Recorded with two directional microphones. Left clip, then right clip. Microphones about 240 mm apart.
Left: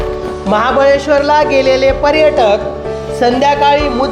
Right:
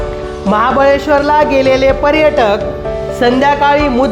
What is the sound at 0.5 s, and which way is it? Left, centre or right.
A woman's voice, right.